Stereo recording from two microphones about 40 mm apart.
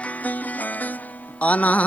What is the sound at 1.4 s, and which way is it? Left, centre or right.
Music, left.